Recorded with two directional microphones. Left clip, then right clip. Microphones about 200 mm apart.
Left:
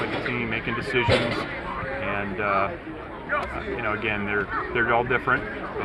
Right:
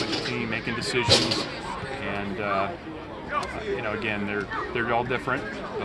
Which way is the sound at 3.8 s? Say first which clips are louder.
Left 6 dB; 5° right (ahead or behind).